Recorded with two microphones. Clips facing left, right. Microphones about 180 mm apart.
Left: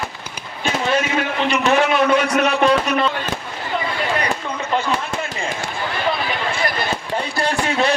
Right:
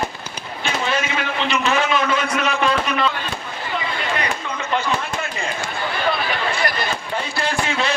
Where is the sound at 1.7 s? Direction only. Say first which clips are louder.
Left 6 dB; 60° left (ahead or behind).